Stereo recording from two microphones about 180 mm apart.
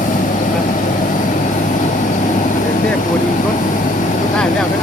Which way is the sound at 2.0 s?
45° left (ahead or behind).